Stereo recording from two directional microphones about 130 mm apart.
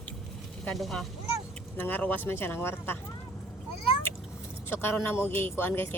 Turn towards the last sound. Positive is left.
turn(degrees=15)  # may be behind; listen again after turning